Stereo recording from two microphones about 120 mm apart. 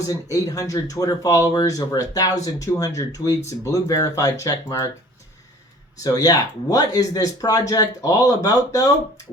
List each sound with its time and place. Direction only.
0.1 s speech: 30° left (ahead or behind)
6.0 s speech: 30° left (ahead or behind)